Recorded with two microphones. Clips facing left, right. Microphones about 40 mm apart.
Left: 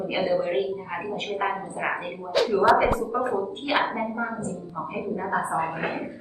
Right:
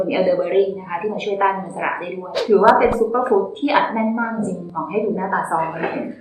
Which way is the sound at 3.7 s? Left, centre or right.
Right.